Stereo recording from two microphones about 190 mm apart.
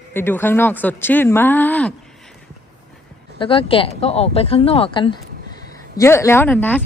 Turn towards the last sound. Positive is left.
turn(degrees=10)  # may be behind; listen again after turning